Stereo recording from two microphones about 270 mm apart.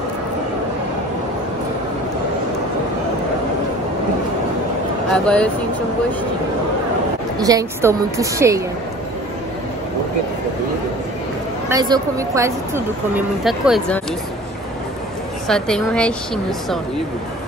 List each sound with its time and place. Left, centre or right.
5.1 s a woman's voice: centre
7.3 s speech: centre
11.7 s speech: centre
15.4 s a woman's voice: centre